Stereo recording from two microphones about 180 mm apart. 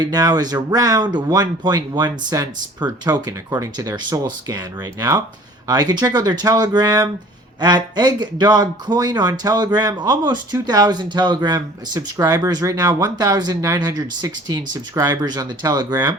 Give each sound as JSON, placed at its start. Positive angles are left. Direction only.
{"t": 0.0, "sound": "speech", "side_deg": -20}